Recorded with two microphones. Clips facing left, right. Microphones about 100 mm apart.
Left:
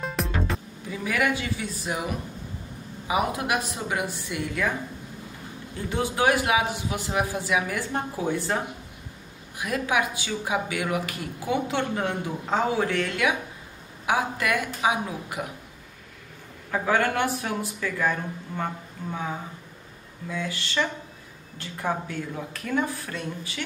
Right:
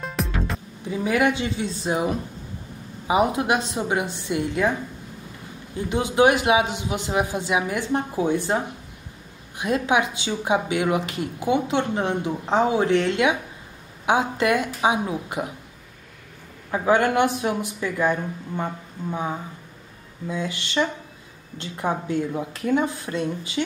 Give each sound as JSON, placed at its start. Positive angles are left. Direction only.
{"t": 0.0, "sound": "music", "side_deg": 0}
{"t": 0.8, "sound": "speech", "side_deg": -25}
{"t": 5.9, "sound": "speech", "side_deg": -20}
{"t": 16.7, "sound": "speech", "side_deg": -20}
{"t": 20.2, "sound": "speech", "side_deg": -20}